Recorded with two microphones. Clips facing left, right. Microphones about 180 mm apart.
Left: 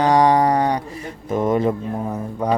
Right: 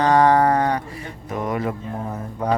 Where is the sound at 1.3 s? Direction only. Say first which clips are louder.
Left 6 dB; 25° left (ahead or behind).